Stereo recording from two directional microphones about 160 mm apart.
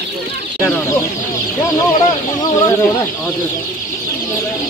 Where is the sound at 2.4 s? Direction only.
25° left (ahead or behind).